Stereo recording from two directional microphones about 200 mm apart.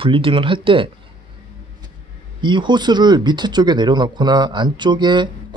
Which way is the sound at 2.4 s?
25° right (ahead or behind).